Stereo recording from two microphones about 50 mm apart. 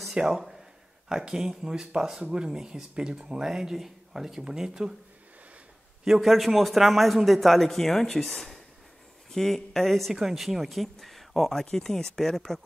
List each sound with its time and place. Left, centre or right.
0.2 s speech: centre
6.0 s a man's voice: centre